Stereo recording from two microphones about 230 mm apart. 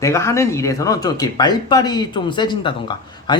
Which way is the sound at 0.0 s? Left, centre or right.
Centre.